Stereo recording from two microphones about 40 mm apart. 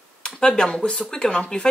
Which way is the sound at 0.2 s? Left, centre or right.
Centre.